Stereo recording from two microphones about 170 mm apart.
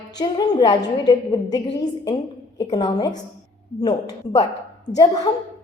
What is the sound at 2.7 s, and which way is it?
Speech, 25° left (ahead or behind).